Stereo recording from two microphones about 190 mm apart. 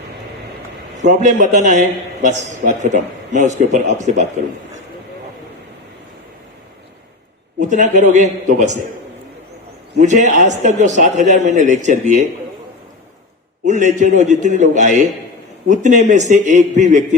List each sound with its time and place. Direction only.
1.0 s a man's voice: 40° right (ahead or behind)
7.6 s a man's voice: 40° right (ahead or behind)
10.0 s a man's voice: 40° right (ahead or behind)
13.7 s a man's voice: 40° right (ahead or behind)